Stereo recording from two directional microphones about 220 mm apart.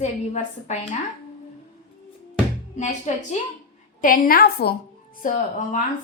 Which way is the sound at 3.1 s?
30° left (ahead or behind).